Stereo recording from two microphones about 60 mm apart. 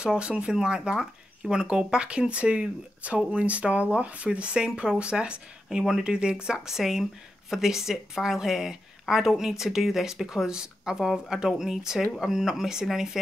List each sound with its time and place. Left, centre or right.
0.0 s speech: centre